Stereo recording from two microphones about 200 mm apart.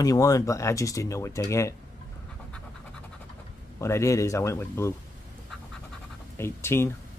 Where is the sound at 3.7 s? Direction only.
15° left (ahead or behind).